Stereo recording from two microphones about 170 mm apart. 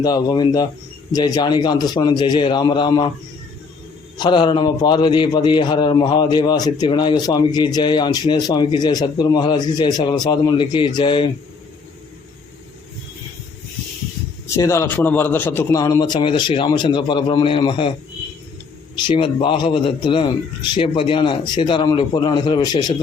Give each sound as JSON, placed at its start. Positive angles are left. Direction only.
{"t": 0.0, "sound": "a man's voice", "side_deg": 25}
{"t": 4.2, "sound": "a man's voice", "side_deg": 25}
{"t": 14.4, "sound": "a man's voice", "side_deg": 15}
{"t": 18.9, "sound": "a man's voice", "side_deg": 30}